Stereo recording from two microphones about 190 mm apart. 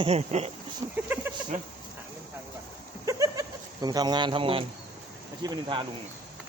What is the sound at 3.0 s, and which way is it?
Goat, 20° right (ahead or behind).